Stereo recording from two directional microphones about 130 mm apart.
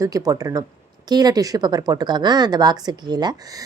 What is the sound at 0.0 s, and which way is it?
A woman's voice, 25° right (ahead or behind).